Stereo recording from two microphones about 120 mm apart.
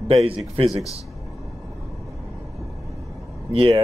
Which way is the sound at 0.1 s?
55° right (ahead or behind).